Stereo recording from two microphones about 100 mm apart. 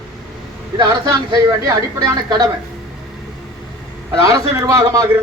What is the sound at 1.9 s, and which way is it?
Speech, 35° right (ahead or behind).